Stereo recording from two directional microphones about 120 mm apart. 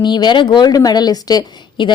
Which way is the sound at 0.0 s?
40° left (ahead or behind).